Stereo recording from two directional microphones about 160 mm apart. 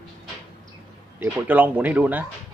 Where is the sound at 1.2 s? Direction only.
10° right (ahead or behind).